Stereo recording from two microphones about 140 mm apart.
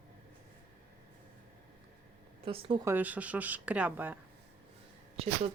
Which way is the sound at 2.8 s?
10° right (ahead or behind).